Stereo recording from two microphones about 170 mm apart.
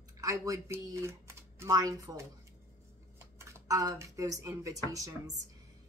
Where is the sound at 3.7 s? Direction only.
20° right (ahead or behind).